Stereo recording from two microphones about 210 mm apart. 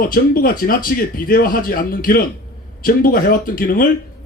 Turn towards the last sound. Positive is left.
turn(degrees=40)  # may be behind; listen again after turning